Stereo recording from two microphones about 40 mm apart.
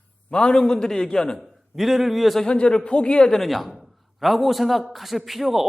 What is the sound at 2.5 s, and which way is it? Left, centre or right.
Speech, left.